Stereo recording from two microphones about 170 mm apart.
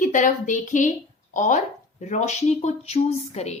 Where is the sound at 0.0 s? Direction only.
50° left (ahead or behind).